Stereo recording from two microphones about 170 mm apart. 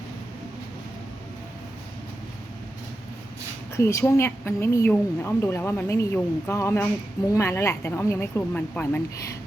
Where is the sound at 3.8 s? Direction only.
15° left (ahead or behind).